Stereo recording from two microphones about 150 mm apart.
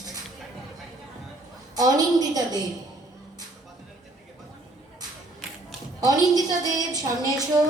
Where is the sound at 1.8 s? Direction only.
25° right (ahead or behind).